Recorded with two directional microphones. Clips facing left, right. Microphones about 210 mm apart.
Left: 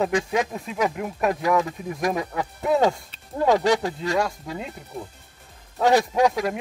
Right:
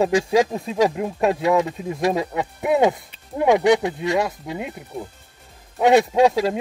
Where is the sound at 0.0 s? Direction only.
30° right (ahead or behind).